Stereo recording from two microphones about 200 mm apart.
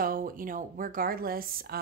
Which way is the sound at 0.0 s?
45° right (ahead or behind).